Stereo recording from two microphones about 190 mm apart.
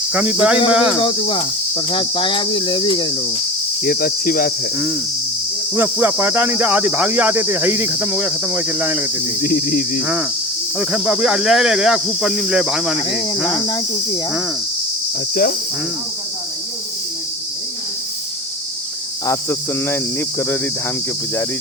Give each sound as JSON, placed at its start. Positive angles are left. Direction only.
{"t": 0.1, "sound": "cricket", "side_deg": -10}
{"t": 0.7, "sound": "speech", "side_deg": -5}
{"t": 0.9, "sound": "speech", "side_deg": 25}
{"t": 3.8, "sound": "cricket", "side_deg": 50}
{"t": 5.7, "sound": "cricket", "side_deg": -10}
{"t": 9.4, "sound": "cricket", "side_deg": 50}
{"t": 10.0, "sound": "cricket", "side_deg": -10}
{"t": 10.8, "sound": "speech", "side_deg": -5}
{"t": 13.5, "sound": "speech", "side_deg": 25}
{"t": 19.2, "sound": "cricket", "side_deg": 15}